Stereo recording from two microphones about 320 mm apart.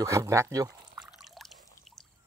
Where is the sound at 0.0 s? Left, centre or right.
Centre.